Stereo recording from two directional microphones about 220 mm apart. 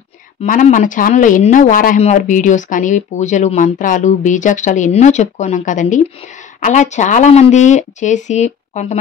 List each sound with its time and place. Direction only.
0.4 s speech: 35° left (ahead or behind)